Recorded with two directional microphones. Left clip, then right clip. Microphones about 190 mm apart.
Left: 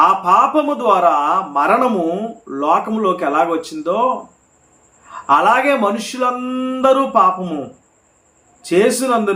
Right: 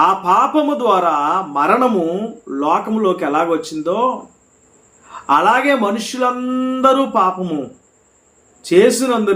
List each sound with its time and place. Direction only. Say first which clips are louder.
0.0 s speech: left 1 dB; 5° right (ahead or behind)
8.6 s speech: right 2 dB; 5° right (ahead or behind)